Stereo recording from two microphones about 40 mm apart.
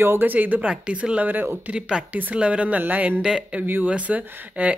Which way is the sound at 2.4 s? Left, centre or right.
Right.